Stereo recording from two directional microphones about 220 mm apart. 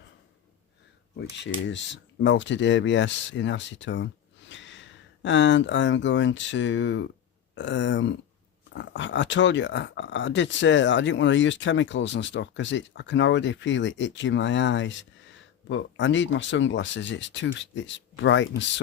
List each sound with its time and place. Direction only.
1.4 s speech: 55° left (ahead or behind)